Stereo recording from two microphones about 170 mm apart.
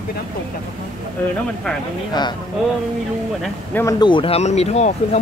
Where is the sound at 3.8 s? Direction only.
25° left (ahead or behind); by 4.9 s 40° left (ahead or behind).